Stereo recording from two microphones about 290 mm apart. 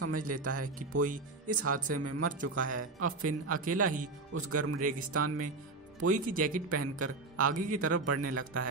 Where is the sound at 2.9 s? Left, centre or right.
Right.